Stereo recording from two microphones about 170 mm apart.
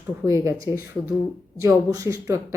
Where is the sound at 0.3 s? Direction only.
15° right (ahead or behind).